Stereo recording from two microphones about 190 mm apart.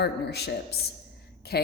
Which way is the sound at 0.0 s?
60° left (ahead or behind).